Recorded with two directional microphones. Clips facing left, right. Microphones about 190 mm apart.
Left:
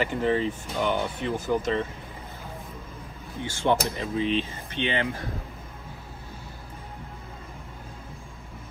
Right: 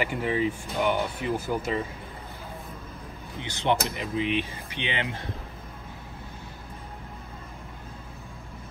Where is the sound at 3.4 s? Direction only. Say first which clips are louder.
Left 2 dB; 20° right (ahead or behind).